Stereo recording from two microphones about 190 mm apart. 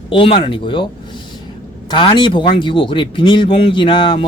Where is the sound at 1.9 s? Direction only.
25° left (ahead or behind).